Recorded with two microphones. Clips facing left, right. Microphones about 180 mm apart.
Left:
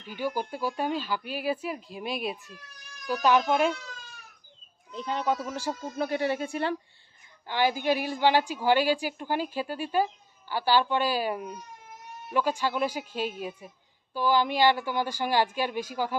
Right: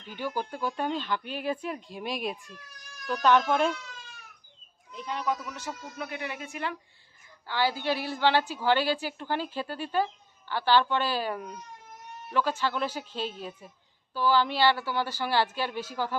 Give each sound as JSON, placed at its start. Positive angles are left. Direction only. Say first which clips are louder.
{"t": 0.2, "sound": "a woman's voice", "louder": "left 2 dB", "side_deg": 10}
{"t": 4.9, "sound": "speech", "louder": "left 3 dB", "side_deg": 30}
{"t": 7.4, "sound": "a woman's voice", "louder": "left 3 dB", "side_deg": 20}